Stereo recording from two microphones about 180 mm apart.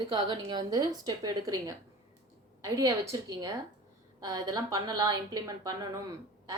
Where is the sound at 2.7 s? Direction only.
20° right (ahead or behind).